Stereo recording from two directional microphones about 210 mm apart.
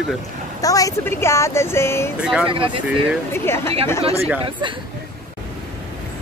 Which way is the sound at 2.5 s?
25° right (ahead or behind).